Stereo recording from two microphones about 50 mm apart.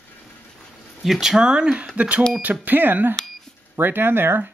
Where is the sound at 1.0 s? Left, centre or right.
Centre.